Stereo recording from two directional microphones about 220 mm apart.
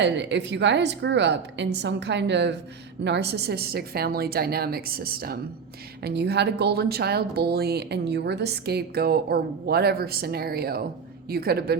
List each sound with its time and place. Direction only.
0.0 s speech: 55° right (ahead or behind)